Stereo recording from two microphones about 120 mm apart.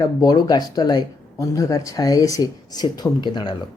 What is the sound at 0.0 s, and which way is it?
Speech, 35° left (ahead or behind).